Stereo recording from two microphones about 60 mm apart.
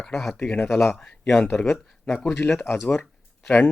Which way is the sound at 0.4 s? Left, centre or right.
Left.